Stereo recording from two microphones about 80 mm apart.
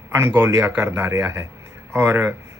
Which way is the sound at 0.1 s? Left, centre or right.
Right.